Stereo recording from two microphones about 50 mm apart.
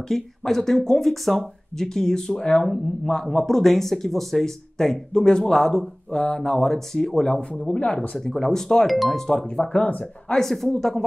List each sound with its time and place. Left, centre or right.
0.1 s speech: centre
8.3 s speech: centre
9.7 s speech: left
10.3 s speech: centre